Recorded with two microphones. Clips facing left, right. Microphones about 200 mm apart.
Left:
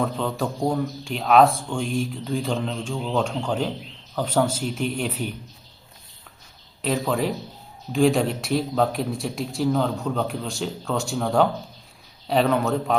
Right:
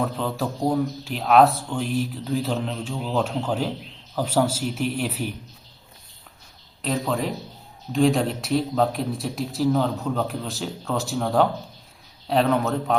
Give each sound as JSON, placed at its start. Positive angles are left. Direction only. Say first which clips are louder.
{"t": 0.0, "sound": "a man's voice", "louder": "left 1 dB", "side_deg": 0}
{"t": 6.8, "sound": "a man's voice", "louder": "left 2 dB", "side_deg": 0}